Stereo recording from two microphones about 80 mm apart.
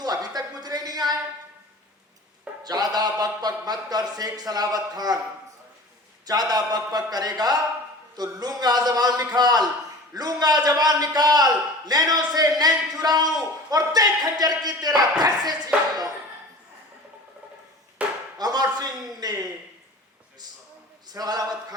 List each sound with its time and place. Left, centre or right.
0.0 s speech: right
2.6 s speech: right
6.2 s a man's voice: right
18.0 s chop: centre
18.3 s a man's voice: right
21.1 s a man's voice: right